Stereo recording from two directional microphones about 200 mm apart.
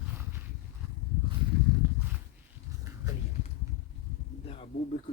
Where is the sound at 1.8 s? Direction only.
10° right (ahead or behind).